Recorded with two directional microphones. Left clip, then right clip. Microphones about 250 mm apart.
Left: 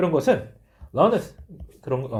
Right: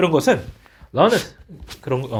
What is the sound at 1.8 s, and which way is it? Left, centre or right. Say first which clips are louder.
Speech: right 3 dB; right.